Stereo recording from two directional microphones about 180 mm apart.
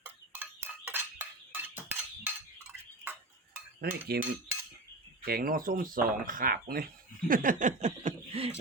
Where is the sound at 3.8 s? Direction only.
60° right (ahead or behind).